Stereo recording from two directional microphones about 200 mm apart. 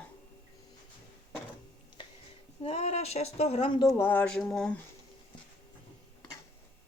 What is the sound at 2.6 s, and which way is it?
Speech, 30° left (ahead or behind).